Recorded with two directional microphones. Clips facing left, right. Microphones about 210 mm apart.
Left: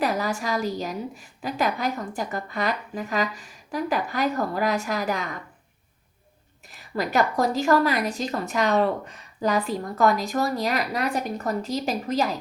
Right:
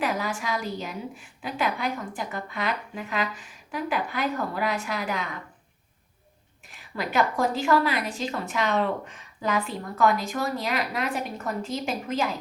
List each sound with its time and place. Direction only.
0.0 s a woman's voice: 40° left (ahead or behind)
6.9 s a woman's voice: 40° left (ahead or behind)